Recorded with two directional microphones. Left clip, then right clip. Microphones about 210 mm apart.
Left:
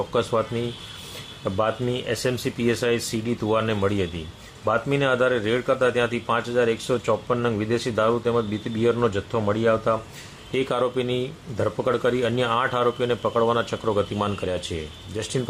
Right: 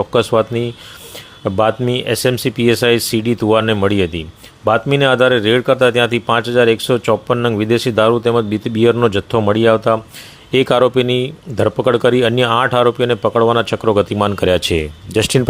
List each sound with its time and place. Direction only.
0.1 s speech: 35° right (ahead or behind)